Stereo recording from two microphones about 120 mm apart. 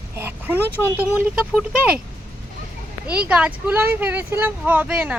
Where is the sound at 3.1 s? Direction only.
10° right (ahead or behind).